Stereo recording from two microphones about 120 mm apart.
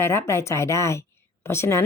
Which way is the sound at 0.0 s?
20° left (ahead or behind).